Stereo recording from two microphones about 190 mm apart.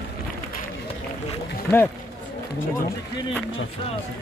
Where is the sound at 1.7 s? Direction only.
60° left (ahead or behind).